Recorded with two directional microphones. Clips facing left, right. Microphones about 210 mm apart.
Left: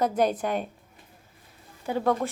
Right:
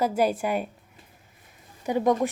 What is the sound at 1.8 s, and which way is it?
Speech, 15° right (ahead or behind).